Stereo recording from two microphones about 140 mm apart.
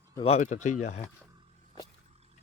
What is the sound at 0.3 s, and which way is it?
Speech, 55° left (ahead or behind).